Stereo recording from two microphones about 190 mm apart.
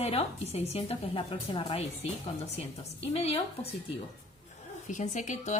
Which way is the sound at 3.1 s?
35° left (ahead or behind).